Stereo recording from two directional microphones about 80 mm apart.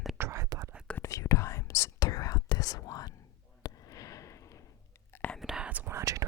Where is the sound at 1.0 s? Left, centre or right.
Left.